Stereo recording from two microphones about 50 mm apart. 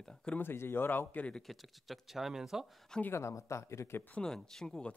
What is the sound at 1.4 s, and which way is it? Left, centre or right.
Speech, centre.